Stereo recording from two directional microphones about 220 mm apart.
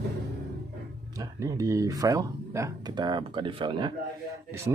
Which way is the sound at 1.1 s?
15° right (ahead or behind).